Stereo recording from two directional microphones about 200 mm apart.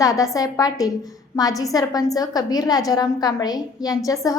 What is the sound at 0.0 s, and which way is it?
A woman's voice, 15° left (ahead or behind).